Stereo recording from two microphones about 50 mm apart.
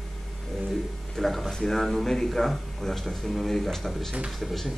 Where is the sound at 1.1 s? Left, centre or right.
Centre.